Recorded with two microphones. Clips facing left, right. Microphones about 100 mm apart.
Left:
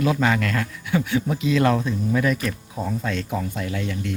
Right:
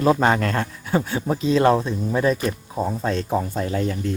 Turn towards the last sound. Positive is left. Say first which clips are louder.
# right 4 dB
turn(degrees=-35)  # may be behind; listen again after turning